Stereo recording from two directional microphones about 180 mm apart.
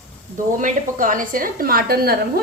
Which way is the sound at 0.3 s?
45° right (ahead or behind).